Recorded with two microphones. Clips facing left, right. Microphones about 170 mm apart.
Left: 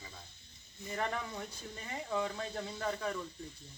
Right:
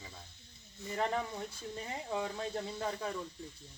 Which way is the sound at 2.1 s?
20° right (ahead or behind).